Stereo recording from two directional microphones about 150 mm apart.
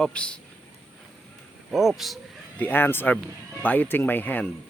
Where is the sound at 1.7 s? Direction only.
Centre (ahead or behind).